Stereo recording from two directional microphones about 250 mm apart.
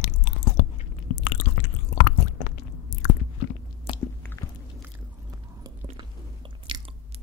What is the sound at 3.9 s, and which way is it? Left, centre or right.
Biting, left.